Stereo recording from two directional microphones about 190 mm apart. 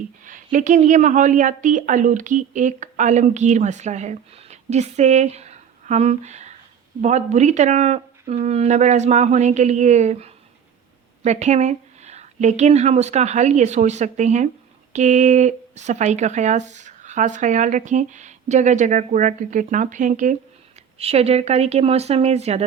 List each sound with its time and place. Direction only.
0.3 s a woman's voice: 45° right (ahead or behind)